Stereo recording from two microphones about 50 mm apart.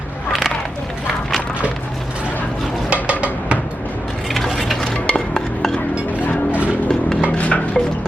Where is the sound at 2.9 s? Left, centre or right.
Right.